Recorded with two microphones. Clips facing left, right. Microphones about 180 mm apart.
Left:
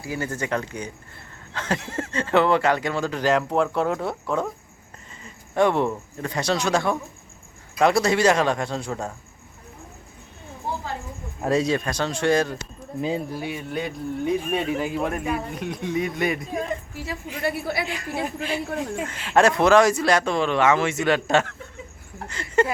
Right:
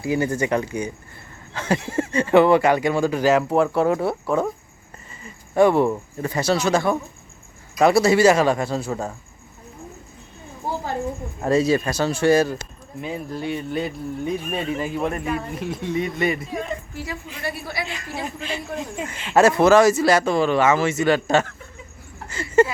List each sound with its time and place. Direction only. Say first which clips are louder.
0.0 s speech: right 7 dB; 15° right (ahead or behind)
11.4 s speech: right 3 dB; centre (ahead or behind)
13.0 s speech: left 4 dB; 30° left (ahead or behind)
13.3 s speech: right 3 dB; 5° left (ahead or behind)
17.3 s a woman's voice: left 5 dB; 55° left (ahead or behind)
19.2 s speech: right 3 dB; 5° right (ahead or behind)